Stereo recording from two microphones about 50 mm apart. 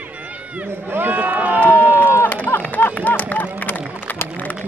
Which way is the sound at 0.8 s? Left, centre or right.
Right.